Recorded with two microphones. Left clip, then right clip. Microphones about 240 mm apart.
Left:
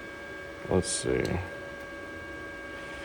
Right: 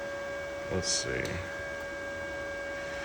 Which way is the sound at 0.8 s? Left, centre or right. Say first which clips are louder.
Left 1 dB; centre.